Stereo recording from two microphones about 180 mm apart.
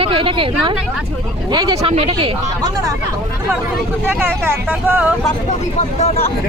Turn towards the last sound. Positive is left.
turn(degrees=35)  # may be behind; listen again after turning